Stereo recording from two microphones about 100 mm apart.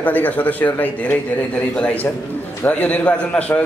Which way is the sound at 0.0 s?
15° left (ahead or behind).